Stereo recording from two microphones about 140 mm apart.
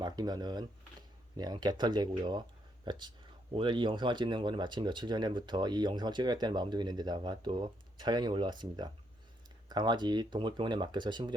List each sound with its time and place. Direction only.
0.0 s speech: 30° right (ahead or behind)